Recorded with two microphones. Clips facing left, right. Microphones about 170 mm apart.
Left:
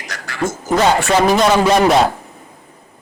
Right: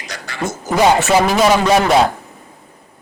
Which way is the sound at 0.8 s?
20° right (ahead or behind).